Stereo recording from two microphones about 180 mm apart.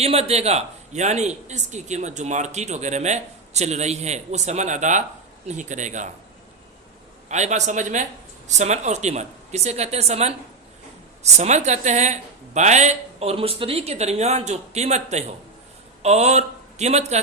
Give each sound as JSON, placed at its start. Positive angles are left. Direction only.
{"t": 0.0, "sound": "speech", "side_deg": -35}
{"t": 7.3, "sound": "a man's voice", "side_deg": -40}